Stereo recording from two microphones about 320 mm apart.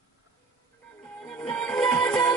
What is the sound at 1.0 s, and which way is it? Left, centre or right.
Music, centre.